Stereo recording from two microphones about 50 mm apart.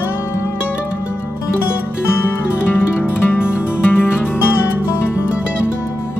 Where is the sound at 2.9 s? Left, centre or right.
Left.